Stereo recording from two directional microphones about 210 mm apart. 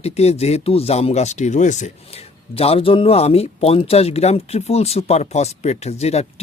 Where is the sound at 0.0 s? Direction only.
30° left (ahead or behind).